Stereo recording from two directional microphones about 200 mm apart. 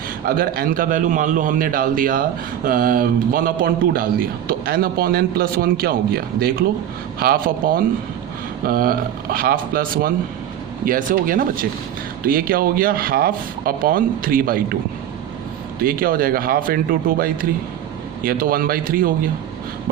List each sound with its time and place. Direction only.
0.3 s a man's voice: 45° right (ahead or behind)
15.8 s a man's voice: 45° right (ahead or behind)